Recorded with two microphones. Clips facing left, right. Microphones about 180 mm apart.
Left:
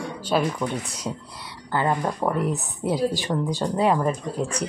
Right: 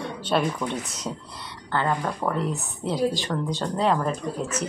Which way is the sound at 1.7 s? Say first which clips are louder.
Left 2 dB; 15° left (ahead or behind).